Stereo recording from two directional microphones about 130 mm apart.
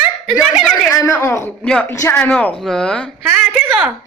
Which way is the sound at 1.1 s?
20° left (ahead or behind).